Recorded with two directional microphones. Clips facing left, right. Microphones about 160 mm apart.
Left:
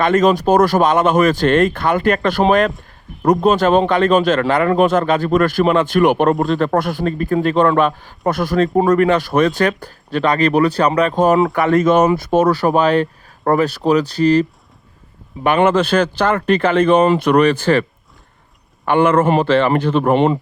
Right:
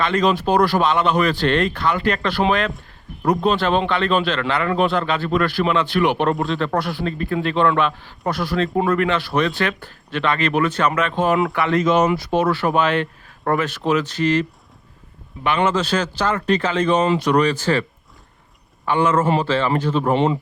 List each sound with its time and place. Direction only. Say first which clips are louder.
0.0 s a man's voice: left 5 dB; 45° left (ahead or behind)
15.4 s speech: left 6 dB; 50° left (ahead or behind)
18.9 s speech: left 4 dB; 60° left (ahead or behind)